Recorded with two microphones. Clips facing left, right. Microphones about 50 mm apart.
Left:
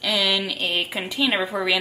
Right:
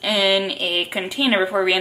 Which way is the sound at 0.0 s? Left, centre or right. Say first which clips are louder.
Right 4 dB; centre.